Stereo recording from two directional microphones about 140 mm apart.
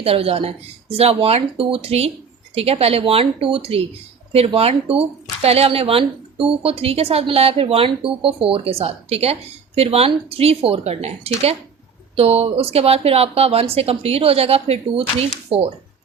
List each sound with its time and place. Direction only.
0.0 s speech: 45° right (ahead or behind)